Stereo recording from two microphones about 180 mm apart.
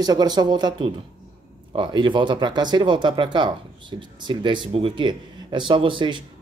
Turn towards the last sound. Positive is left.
turn(degrees=-25)  # may be behind; listen again after turning